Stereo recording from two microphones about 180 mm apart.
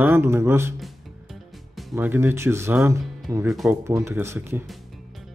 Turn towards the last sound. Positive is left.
turn(degrees=-15)  # may be behind; listen again after turning